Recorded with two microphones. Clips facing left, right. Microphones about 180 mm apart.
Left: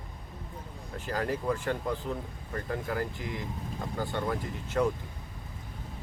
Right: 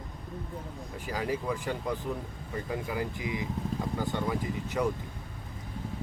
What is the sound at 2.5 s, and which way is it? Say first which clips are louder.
Speech: left 1 dB; 10° right (ahead or behind).